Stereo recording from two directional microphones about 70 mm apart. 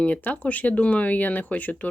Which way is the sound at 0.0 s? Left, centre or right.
Left.